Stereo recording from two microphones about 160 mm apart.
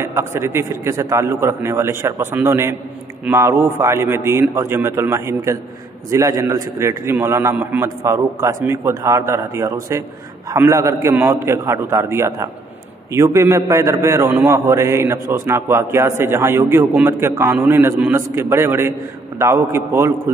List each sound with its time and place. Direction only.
0.0 s a man's voice: 15° right (ahead or behind)